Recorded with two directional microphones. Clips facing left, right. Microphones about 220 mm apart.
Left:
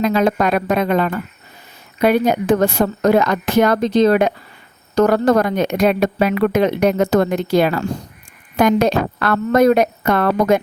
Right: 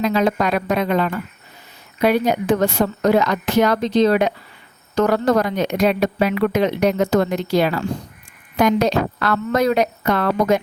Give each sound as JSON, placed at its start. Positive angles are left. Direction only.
{"t": 0.0, "sound": "speech", "side_deg": 50}